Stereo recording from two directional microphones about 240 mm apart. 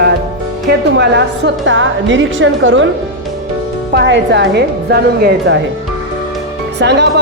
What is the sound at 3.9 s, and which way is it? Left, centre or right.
A woman's voice, right.